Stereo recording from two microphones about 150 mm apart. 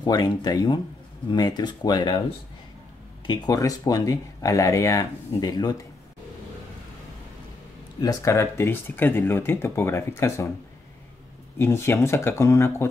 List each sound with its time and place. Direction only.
0.0 s speech: 25° left (ahead or behind)
3.3 s speech: 25° left (ahead or behind)
8.0 s speech: 20° left (ahead or behind)
11.5 s speech: 15° left (ahead or behind)